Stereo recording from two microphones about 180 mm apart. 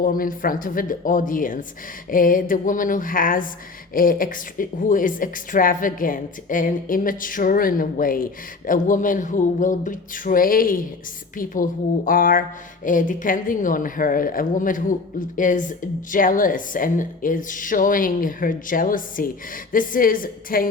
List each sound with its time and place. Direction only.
0.0 s speech: 50° left (ahead or behind)